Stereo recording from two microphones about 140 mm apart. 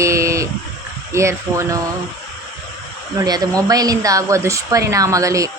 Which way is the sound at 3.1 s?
30° right (ahead or behind).